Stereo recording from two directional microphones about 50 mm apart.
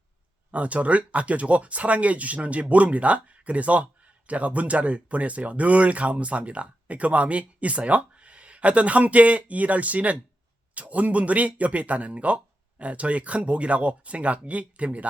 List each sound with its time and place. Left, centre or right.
0.5 s speech: right